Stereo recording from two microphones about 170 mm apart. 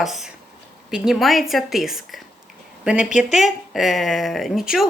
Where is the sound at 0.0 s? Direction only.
Centre (ahead or behind).